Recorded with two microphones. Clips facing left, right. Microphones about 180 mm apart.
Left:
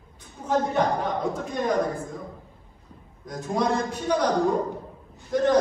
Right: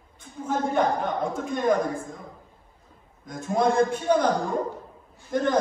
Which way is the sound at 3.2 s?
50° right (ahead or behind).